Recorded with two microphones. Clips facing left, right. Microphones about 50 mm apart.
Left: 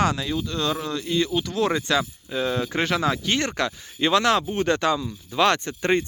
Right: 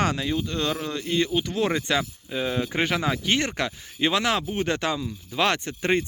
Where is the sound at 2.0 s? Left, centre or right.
Centre.